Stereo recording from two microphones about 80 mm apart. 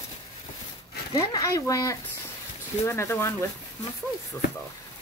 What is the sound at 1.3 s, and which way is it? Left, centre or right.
Speech, left.